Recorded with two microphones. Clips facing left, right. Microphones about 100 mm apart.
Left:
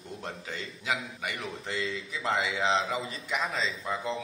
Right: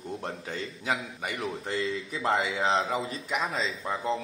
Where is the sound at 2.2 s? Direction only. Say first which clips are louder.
Right 2 dB; 40° right (ahead or behind).